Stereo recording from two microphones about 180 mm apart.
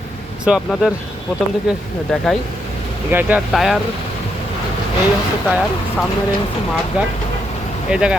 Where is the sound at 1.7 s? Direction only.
Centre (ahead or behind).